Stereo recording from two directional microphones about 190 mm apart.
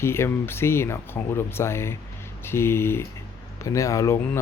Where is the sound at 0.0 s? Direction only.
15° left (ahead or behind).